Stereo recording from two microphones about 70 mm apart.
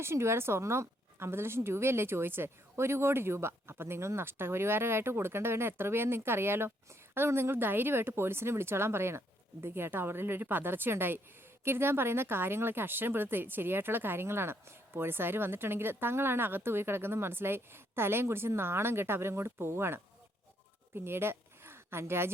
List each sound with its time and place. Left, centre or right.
0.0 s a woman's voice: right